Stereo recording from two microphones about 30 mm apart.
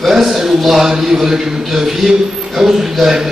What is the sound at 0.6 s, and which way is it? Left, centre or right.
A man's voice, centre.